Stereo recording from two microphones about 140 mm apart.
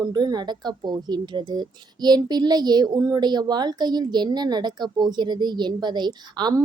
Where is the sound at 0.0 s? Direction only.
30° right (ahead or behind).